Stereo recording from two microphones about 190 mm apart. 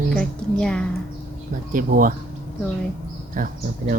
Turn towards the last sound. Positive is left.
turn(degrees=-45)  # may be behind; listen again after turning